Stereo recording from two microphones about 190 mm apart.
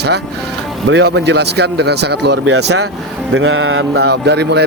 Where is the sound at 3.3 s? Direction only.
90° right; by 4.6 s 60° right (ahead or behind).